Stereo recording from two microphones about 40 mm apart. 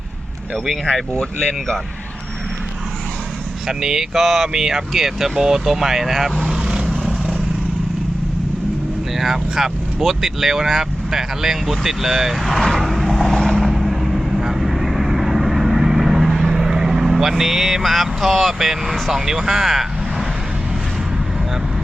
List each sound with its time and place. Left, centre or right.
1.1 s speech: left
3.7 s speech: centre
6.7 s vehicle: right
6.9 s vehicle: centre
9.1 s speech: centre
12.5 s vehicle: centre
13.6 s vehicle: centre
19.1 s speech: centre